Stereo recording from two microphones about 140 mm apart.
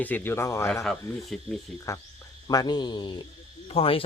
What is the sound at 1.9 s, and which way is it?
Cricket, 20° left (ahead or behind).